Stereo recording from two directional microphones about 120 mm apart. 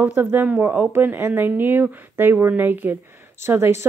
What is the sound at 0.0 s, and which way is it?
Speech, 15° right (ahead or behind).